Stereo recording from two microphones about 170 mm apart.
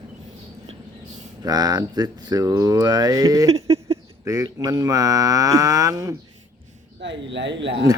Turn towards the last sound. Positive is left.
turn(degrees=-90)